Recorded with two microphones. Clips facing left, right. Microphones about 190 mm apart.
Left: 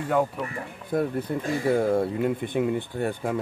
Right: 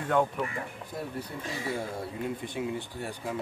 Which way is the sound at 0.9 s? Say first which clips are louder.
Left 12 dB; 60° left (ahead or behind).